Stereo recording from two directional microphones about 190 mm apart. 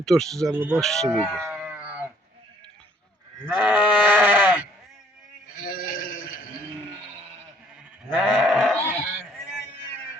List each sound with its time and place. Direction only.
0.0 s speech: centre (ahead or behind)
0.5 s speech: 10° right (ahead or behind)
0.8 s speech: centre (ahead or behind)
1.6 s livestock: 5° right (ahead or behind)
3.5 s sheep: 5° right (ahead or behind)
5.6 s sheep: 50° left (ahead or behind)
8.1 s sheep: 5° right (ahead or behind)